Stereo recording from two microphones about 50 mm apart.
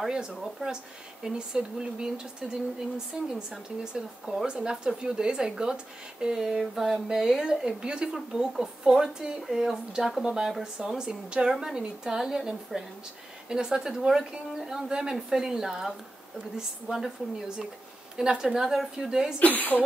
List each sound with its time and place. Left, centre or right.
0.1 s speech: centre
11.5 s speech: centre
16.9 s speech: centre
19.4 s speech: left